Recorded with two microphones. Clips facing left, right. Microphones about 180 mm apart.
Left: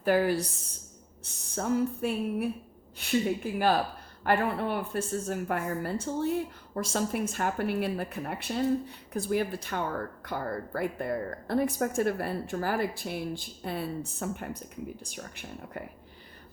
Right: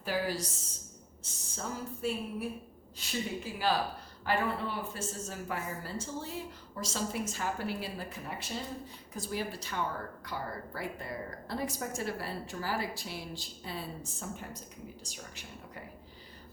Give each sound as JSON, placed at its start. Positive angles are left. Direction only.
{"t": 0.0, "sound": "a woman's voice", "side_deg": 55}